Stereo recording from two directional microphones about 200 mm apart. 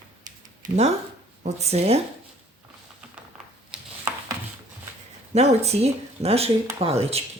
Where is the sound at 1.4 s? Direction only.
30° right (ahead or behind).